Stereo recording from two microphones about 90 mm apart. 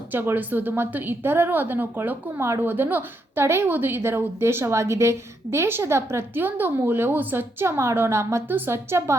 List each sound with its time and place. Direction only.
0.1 s a woman's voice: 20° right (ahead or behind)